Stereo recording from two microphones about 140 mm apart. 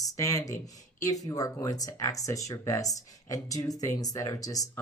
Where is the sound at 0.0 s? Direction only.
25° left (ahead or behind).